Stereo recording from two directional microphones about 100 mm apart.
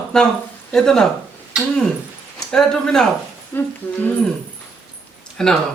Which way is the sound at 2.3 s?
5° left (ahead or behind).